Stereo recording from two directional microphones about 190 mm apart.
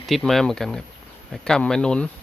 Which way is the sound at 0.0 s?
Centre (ahead or behind).